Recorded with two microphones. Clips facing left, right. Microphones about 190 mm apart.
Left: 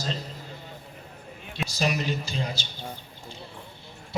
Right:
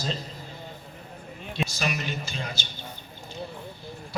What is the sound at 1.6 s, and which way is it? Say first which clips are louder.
A man's voice: left 3 dB; 35° left (ahead or behind).